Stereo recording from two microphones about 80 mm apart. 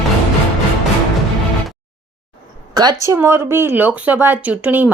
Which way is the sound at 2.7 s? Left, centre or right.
Right.